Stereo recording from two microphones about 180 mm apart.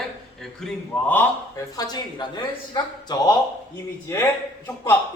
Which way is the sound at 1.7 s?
20° left (ahead or behind).